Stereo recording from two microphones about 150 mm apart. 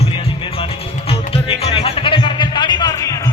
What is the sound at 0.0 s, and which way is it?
Music, 40° left (ahead or behind).